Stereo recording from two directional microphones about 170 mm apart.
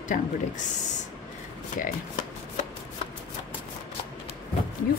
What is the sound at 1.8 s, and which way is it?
Speech, 50° left (ahead or behind).